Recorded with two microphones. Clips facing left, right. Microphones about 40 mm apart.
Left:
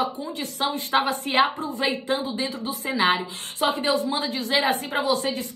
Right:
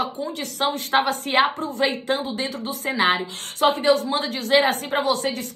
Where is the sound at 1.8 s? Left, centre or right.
Right.